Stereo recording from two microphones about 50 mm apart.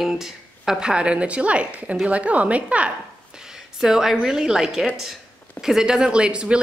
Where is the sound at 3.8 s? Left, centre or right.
Centre.